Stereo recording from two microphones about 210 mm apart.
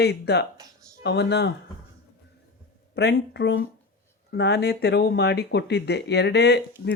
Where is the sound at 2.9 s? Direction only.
55° left (ahead or behind).